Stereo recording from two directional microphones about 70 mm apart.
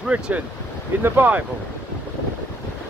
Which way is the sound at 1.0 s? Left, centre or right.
Right.